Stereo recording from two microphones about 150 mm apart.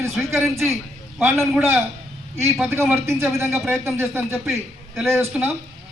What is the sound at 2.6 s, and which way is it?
A man's voice, 15° right (ahead or behind).